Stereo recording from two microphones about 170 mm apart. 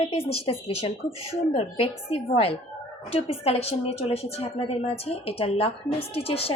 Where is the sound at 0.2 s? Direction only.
35° left (ahead or behind).